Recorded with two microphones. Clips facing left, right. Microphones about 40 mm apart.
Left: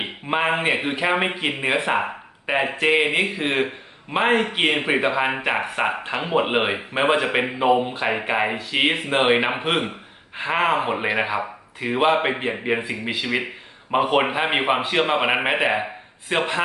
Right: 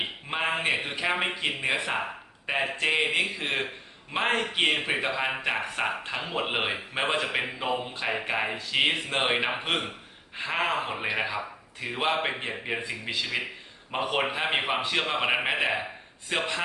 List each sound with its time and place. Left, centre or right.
0.0 s speech: left